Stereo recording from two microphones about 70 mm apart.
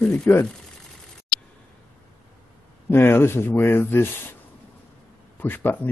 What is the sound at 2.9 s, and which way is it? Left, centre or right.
Speech, left.